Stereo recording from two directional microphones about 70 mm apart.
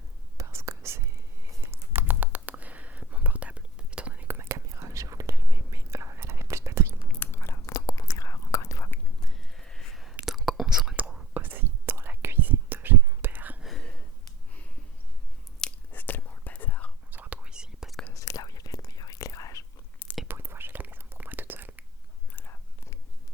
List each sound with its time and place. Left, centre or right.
0.3 s whispering: right; by 4.3 s centre
4.3 s whispering: right
7.3 s biting: left
7.7 s whispering: left
9.2 s a sound: centre
10.2 s whispering: centre
11.3 s whispering: right
13.7 s a sound: centre
15.9 s whispering: left
17.1 s whispering: right
18.1 s whispering: left
20.2 s whispering: right
22.3 s whispering: left